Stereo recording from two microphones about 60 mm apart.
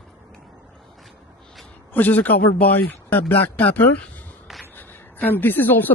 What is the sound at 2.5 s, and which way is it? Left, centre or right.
A man's voice, left.